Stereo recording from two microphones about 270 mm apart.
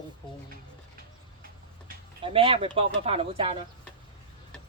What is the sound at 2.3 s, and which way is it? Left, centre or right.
Speech, centre.